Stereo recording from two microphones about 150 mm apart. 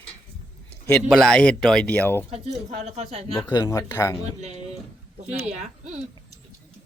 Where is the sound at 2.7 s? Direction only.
45° right (ahead or behind).